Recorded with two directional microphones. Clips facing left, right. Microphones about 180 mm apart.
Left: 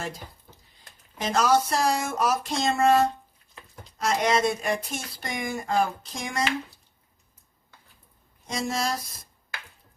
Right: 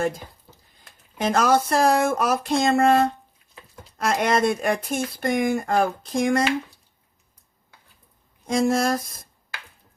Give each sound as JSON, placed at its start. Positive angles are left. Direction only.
{"t": 1.2, "sound": "speech", "side_deg": -55}
{"t": 8.4, "sound": "speech", "side_deg": -55}